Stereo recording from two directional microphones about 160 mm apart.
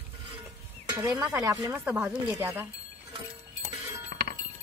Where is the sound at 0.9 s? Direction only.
20° right (ahead or behind).